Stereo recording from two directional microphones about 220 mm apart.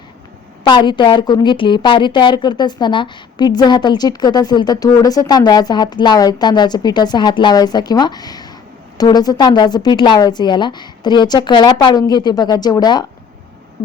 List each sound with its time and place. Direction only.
0.6 s a woman's voice: 20° left (ahead or behind)